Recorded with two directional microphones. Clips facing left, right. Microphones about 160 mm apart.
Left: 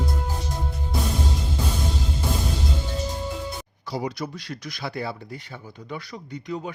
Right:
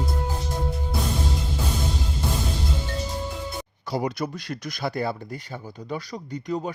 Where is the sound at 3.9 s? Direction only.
55° right (ahead or behind).